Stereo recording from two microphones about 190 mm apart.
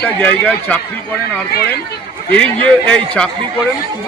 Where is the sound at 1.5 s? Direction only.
55° left (ahead or behind).